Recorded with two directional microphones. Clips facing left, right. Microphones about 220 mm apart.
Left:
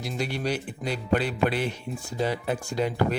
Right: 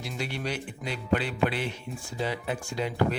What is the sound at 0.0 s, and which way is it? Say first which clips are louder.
Speech: left 4 dB; 40° left (ahead or behind).